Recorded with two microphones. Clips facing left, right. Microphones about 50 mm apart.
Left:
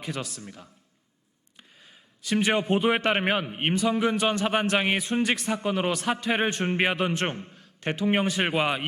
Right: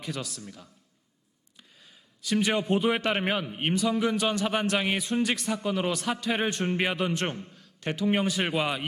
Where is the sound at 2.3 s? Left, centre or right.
Left.